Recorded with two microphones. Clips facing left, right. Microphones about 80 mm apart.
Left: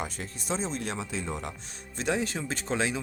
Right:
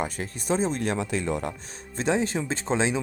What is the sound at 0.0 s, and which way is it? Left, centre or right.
Speech, right.